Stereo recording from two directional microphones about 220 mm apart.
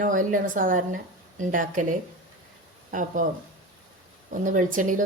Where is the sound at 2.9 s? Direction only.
35° right (ahead or behind).